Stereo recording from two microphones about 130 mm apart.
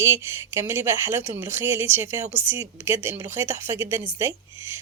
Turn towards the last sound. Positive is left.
turn(degrees=-20)  # may be behind; listen again after turning